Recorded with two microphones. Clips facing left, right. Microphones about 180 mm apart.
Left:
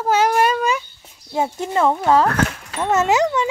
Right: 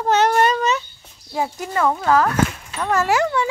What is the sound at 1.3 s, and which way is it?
Speech, 20° left (ahead or behind).